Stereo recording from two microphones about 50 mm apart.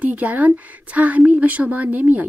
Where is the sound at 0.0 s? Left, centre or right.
Right.